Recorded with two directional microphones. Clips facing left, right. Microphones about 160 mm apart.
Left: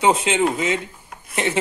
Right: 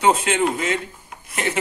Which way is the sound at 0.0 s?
15° left (ahead or behind).